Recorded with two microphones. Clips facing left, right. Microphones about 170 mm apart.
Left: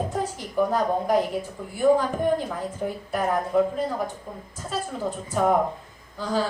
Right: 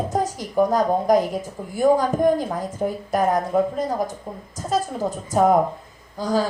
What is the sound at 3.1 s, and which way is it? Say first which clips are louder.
Speech: right 2 dB; 40° right (ahead or behind).